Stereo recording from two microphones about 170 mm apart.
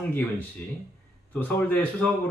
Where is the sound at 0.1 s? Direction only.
10° left (ahead or behind).